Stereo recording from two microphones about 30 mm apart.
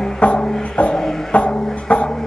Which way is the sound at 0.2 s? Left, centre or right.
Left.